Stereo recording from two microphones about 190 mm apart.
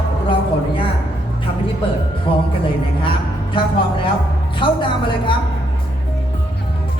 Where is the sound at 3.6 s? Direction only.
25° left (ahead or behind).